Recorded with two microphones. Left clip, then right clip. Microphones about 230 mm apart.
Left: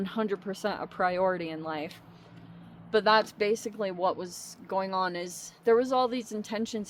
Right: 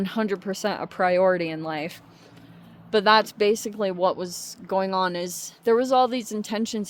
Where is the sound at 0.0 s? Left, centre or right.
Right.